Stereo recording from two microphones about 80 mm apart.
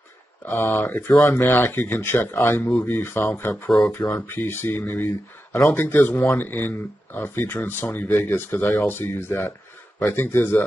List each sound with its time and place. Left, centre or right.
0.5 s speech: left